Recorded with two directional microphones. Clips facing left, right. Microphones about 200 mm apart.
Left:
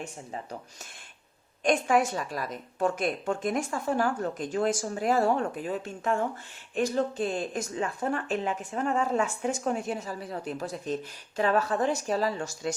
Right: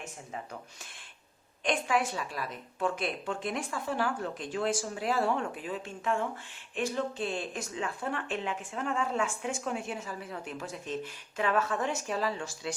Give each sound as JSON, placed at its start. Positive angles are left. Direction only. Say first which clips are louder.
{"t": 1.6, "sound": "a woman's voice", "louder": "left 5 dB", "side_deg": 45}